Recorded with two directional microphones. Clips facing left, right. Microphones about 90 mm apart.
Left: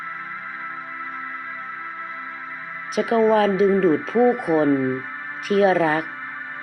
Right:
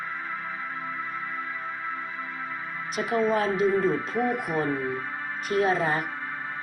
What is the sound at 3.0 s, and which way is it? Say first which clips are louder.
Speech: left 8 dB; 70° left (ahead or behind).